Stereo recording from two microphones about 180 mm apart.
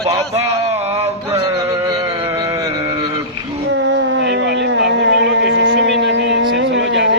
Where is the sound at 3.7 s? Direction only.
80° right.